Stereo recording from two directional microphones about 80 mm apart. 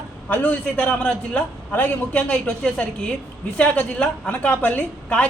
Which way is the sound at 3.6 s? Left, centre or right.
Centre.